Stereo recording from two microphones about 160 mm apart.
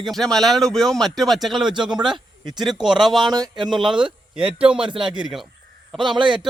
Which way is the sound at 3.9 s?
30° right (ahead or behind).